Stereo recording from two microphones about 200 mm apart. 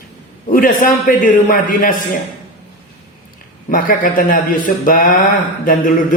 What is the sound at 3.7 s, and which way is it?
A man's voice, 45° left (ahead or behind).